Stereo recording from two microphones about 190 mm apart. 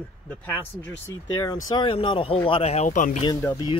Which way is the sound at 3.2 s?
20° left (ahead or behind).